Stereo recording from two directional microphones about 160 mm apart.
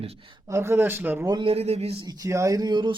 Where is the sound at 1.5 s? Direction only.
40° right (ahead or behind).